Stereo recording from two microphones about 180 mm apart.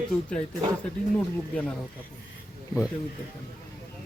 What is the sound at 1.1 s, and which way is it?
Speech, 5° left (ahead or behind).